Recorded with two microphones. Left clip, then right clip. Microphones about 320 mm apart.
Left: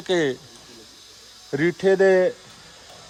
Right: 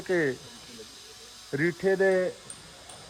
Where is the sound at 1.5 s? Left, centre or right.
Centre.